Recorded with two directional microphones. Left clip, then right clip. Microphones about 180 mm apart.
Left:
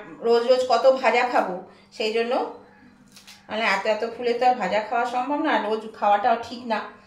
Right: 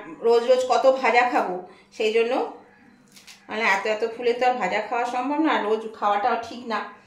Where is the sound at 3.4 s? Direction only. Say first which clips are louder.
Even; 30° right (ahead or behind).